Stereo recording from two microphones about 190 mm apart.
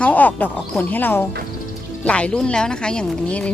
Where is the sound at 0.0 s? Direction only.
10° left (ahead or behind).